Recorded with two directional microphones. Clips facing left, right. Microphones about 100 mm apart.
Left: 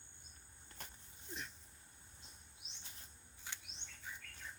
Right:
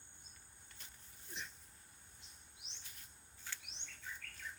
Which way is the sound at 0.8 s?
55° left (ahead or behind).